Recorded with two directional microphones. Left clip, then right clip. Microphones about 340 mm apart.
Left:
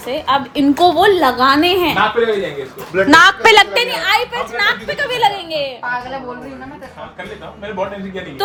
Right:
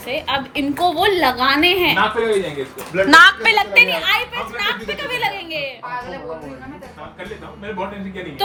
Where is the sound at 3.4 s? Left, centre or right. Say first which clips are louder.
Left 7 dB; left.